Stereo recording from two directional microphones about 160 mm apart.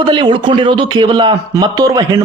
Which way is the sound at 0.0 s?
30° right (ahead or behind).